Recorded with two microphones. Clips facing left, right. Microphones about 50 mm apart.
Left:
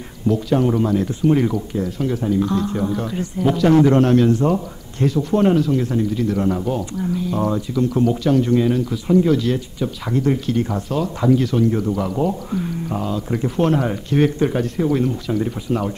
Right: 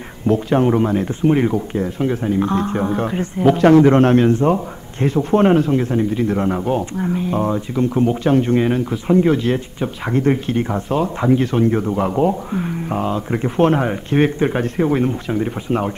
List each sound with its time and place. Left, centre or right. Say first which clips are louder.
0.3 s speech: right 2 dB; right